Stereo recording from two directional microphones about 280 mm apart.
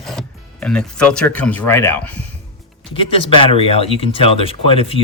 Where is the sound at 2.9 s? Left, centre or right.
Centre.